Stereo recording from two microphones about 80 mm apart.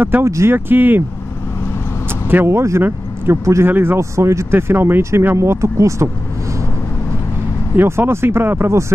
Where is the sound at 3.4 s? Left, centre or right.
Right.